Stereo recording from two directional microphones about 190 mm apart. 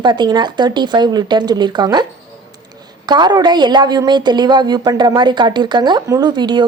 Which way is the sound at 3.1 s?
20° right (ahead or behind).